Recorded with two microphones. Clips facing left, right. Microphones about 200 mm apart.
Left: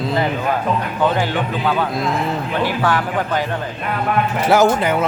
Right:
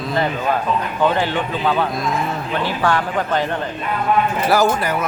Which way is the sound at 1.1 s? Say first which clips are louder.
Even; 10° left (ahead or behind).